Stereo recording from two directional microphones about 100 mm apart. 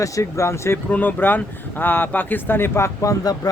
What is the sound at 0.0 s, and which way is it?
Speech, 30° left (ahead or behind).